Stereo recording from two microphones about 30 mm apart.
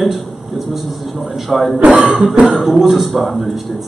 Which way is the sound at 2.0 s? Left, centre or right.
Right.